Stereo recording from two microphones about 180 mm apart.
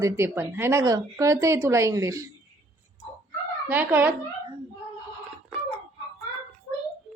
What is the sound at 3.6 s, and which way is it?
Speech, 10° right (ahead or behind).